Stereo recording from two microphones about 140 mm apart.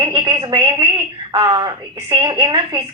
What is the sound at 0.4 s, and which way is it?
Speech, 35° right (ahead or behind).